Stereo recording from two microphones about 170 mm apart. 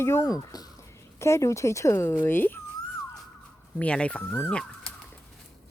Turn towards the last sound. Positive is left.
turn(degrees=5)  # may be behind; listen again after turning